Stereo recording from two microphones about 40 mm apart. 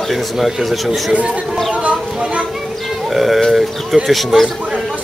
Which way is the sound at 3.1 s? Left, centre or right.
Centre.